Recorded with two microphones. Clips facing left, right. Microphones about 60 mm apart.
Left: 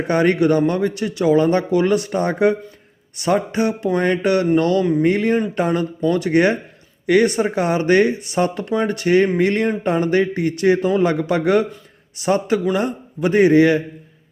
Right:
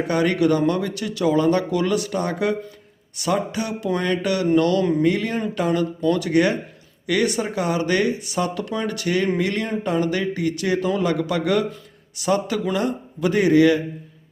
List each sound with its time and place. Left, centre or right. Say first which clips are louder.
0.1 s speech: left 4 dB; left